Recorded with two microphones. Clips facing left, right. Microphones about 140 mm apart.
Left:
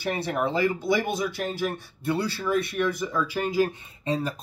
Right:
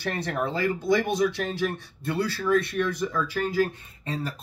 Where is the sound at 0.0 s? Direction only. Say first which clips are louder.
Left 2 dB; 10° left (ahead or behind).